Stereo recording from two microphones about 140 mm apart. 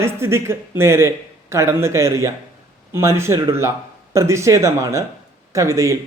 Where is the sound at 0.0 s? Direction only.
20° right (ahead or behind).